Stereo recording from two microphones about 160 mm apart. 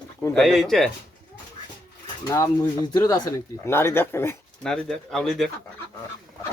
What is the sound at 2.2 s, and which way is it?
Speech, 20° left (ahead or behind).